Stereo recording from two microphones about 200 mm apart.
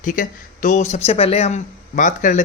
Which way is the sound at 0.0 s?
40° left (ahead or behind).